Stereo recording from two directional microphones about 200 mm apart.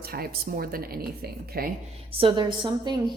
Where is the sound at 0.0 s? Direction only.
50° right (ahead or behind).